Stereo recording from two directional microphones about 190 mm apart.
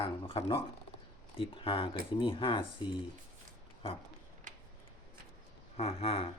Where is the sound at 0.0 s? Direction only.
25° left (ahead or behind).